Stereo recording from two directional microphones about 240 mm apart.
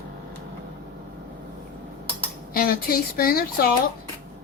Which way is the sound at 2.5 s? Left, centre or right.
Left.